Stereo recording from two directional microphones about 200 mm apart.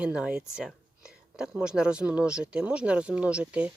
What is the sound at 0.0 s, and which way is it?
Speech, 5° right (ahead or behind).